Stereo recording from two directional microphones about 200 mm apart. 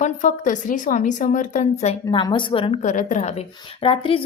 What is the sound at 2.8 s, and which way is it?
A woman's voice, 40° left (ahead or behind).